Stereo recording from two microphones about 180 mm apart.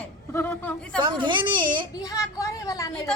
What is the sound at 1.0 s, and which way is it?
Speech, 25° right (ahead or behind).